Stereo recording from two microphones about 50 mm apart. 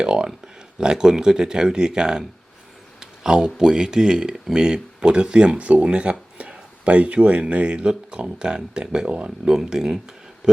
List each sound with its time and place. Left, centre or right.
0.0 s speech: centre